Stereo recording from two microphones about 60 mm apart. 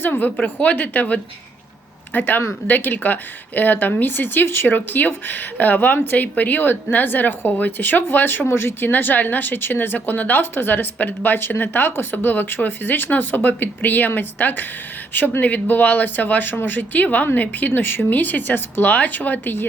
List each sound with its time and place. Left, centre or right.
0.0 s speech: left